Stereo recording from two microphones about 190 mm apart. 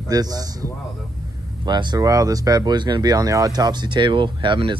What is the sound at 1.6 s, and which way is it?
Speech, 25° right (ahead or behind).